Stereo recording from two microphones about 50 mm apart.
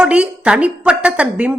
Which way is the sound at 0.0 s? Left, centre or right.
Right.